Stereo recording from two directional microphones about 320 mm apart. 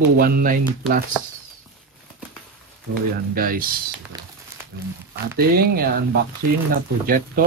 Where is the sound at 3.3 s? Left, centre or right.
Right.